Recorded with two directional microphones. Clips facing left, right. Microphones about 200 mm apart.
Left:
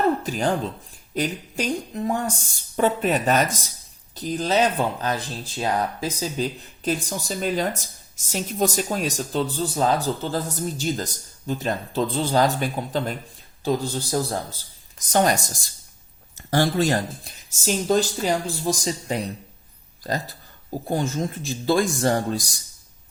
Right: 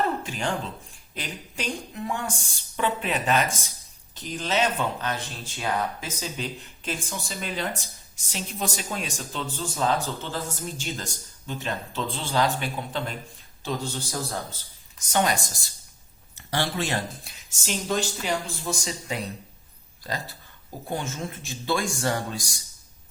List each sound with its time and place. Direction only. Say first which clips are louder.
0.2 s speech: left 6 dB; 40° left (ahead or behind)
20.8 s speech: left 6 dB; 35° left (ahead or behind)